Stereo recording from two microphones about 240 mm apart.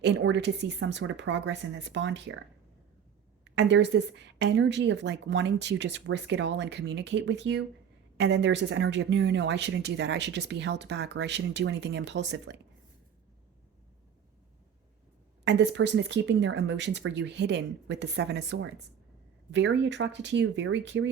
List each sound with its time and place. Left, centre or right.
0.0 s speech: right
3.4 s speech: right
15.4 s speech: right